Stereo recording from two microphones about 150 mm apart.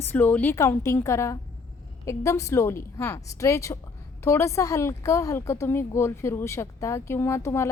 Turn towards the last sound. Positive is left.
turn(degrees=20)  # may be behind; listen again after turning